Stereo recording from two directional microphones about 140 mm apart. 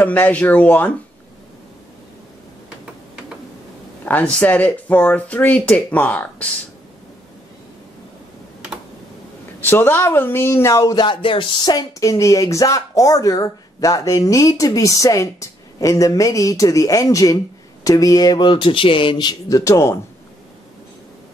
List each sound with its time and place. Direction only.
0.0 s speech: 10° left (ahead or behind)
4.0 s speech: 10° left (ahead or behind)
9.6 s speech: 15° left (ahead or behind)